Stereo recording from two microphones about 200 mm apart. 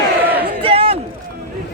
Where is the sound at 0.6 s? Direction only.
30° right (ahead or behind).